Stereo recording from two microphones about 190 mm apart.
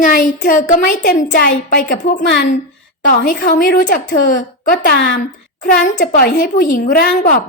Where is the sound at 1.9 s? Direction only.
60° left (ahead or behind).